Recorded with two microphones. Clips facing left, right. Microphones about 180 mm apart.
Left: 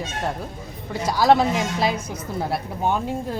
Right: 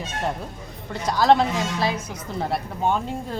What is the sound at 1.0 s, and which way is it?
Speech, 5° left (ahead or behind).